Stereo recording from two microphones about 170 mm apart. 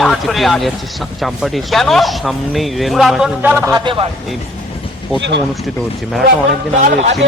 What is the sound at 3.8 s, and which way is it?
Speech, 30° right (ahead or behind).